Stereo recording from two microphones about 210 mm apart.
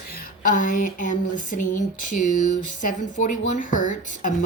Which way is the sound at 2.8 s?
35° left (ahead or behind).